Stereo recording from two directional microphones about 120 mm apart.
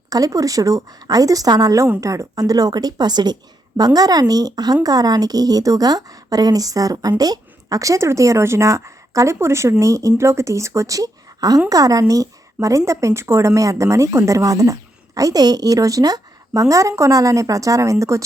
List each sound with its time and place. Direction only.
0.1 s speech: 30° right (ahead or behind)